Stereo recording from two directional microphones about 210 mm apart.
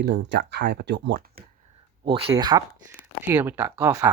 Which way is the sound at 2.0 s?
20° right (ahead or behind).